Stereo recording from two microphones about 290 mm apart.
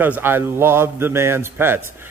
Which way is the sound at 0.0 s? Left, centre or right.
Centre.